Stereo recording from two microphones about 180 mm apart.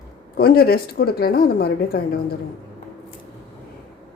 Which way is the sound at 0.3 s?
60° left (ahead or behind).